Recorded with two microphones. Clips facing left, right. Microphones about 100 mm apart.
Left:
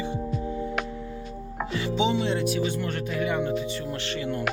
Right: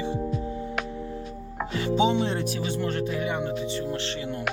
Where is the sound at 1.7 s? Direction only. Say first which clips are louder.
Right 2 dB; 40° right (ahead or behind); by 3.5 s 25° right (ahead or behind).